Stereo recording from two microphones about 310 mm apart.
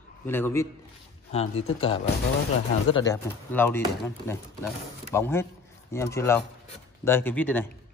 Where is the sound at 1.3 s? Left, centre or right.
Centre.